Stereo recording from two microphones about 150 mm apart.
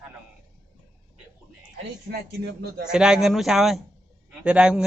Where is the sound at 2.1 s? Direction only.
90° right.